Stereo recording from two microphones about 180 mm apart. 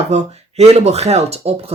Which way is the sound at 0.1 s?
35° right (ahead or behind).